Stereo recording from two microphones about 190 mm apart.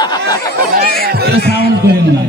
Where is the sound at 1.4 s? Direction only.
60° left (ahead or behind).